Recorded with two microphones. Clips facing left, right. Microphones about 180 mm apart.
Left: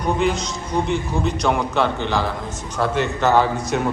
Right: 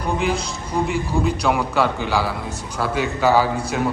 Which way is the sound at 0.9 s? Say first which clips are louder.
Right 1 dB; 5° right (ahead or behind).